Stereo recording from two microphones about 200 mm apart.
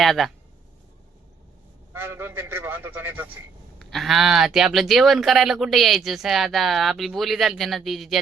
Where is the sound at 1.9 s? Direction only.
10° right (ahead or behind).